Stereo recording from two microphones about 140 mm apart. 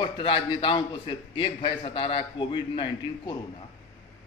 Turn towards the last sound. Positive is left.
turn(degrees=30)  # may be behind; listen again after turning